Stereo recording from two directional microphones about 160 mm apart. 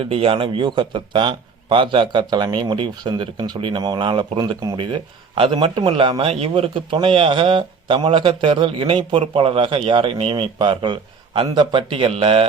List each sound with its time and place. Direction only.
0.0 s speech: 35° right (ahead or behind)